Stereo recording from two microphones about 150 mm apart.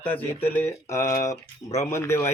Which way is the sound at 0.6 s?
20° left (ahead or behind).